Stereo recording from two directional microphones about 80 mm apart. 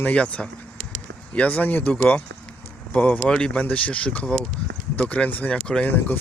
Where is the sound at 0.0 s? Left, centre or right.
Centre.